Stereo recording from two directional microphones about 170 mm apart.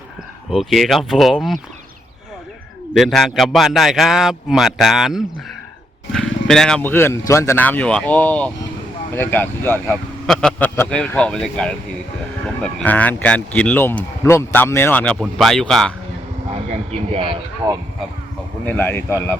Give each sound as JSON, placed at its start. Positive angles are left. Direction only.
{"t": 0.5, "sound": "a man's voice", "side_deg": 0}
{"t": 2.9, "sound": "a man's voice", "side_deg": 0}
{"t": 17.6, "sound": "speech", "side_deg": -20}
{"t": 18.6, "sound": "speech", "side_deg": 10}